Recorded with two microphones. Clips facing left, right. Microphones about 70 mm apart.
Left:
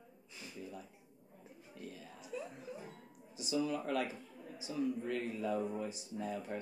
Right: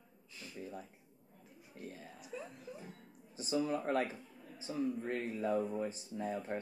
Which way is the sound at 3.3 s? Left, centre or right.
Right.